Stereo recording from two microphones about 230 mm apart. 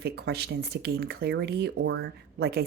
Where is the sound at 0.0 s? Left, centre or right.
Right.